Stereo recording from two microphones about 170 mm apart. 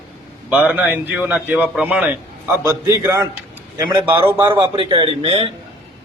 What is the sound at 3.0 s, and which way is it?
Speech, 20° right (ahead or behind).